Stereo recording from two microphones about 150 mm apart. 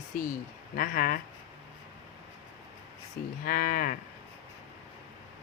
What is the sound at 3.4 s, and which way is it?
Cattle, 70° left (ahead or behind).